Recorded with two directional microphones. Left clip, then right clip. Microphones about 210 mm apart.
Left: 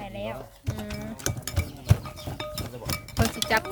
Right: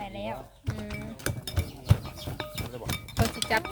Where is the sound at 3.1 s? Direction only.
10° left (ahead or behind).